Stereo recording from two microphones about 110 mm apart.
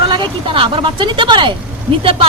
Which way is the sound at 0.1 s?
50° right (ahead or behind).